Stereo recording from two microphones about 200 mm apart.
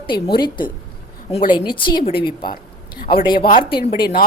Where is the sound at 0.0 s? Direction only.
25° left (ahead or behind).